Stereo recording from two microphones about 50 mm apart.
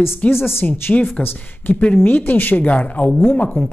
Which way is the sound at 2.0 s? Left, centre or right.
Left.